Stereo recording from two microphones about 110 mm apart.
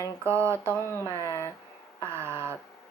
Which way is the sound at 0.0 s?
25° right (ahead or behind).